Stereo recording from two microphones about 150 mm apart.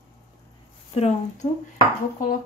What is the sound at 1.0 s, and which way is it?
Speech, 45° left (ahead or behind).